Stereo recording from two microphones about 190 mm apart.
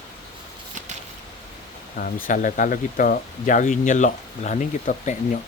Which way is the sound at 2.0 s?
45° left (ahead or behind).